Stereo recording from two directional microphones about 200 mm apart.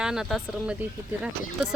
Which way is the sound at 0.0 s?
5° right (ahead or behind).